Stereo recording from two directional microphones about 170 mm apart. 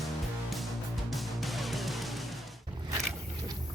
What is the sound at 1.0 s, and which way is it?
Music, centre (ahead or behind).